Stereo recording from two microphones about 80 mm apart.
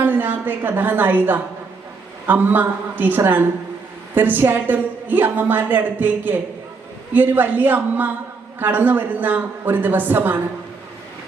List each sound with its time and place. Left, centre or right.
0.0 s a woman's voice: right